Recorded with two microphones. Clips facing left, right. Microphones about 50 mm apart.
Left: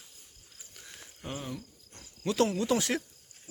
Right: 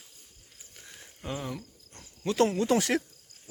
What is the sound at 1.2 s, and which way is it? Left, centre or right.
Speech, right.